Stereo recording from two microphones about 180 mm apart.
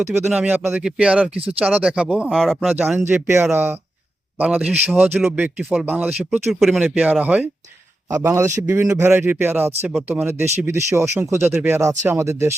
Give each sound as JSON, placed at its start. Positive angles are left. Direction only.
{"t": 0.3, "sound": "speech", "side_deg": -10}
{"t": 2.7, "sound": "speech", "side_deg": -10}